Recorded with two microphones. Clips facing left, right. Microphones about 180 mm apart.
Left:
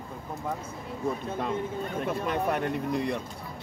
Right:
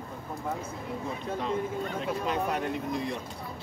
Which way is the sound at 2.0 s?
55° left (ahead or behind).